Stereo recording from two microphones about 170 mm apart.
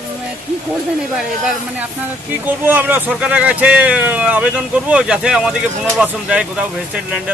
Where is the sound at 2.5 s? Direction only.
10° right (ahead or behind).